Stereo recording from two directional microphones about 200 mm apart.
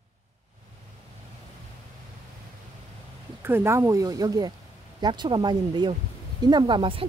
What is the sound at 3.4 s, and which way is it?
Speech, 10° right (ahead or behind).